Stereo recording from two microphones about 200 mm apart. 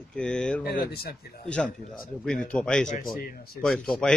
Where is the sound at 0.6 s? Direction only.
55° left (ahead or behind).